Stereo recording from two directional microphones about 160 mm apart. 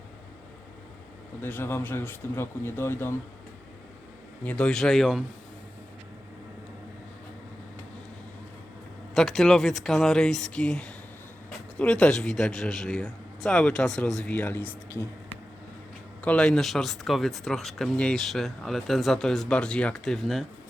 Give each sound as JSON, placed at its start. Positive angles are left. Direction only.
{"t": 1.4, "sound": "speech", "side_deg": 15}
{"t": 4.4, "sound": "speech", "side_deg": 5}
{"t": 9.1, "sound": "speech", "side_deg": 0}
{"t": 16.2, "sound": "speech", "side_deg": 10}